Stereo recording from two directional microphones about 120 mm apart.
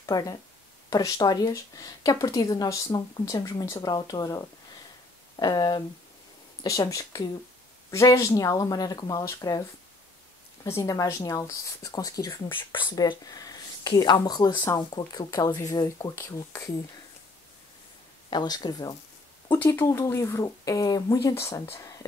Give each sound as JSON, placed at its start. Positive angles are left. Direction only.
{"t": 0.0, "sound": "speech", "side_deg": 30}
{"t": 10.6, "sound": "speech", "side_deg": 30}
{"t": 12.4, "sound": "speech", "side_deg": 45}
{"t": 18.3, "sound": "speech", "side_deg": 35}
{"t": 19.5, "sound": "speech", "side_deg": 20}